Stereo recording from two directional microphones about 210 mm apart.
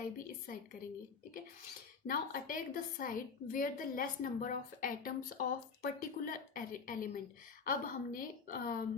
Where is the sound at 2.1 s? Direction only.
40° left (ahead or behind).